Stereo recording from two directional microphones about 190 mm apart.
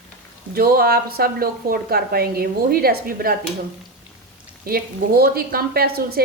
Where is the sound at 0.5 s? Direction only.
55° right (ahead or behind).